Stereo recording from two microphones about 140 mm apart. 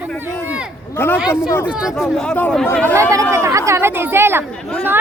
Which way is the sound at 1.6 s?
5° right (ahead or behind).